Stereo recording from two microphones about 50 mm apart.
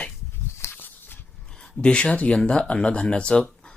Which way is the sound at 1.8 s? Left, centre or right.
Left.